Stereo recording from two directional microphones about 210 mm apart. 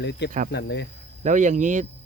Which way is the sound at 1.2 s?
35° right (ahead or behind).